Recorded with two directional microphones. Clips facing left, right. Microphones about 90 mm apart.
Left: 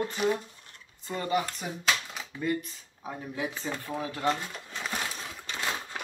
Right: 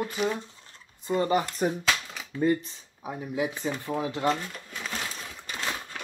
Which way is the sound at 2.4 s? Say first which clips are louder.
Right 6 dB; 30° right (ahead or behind).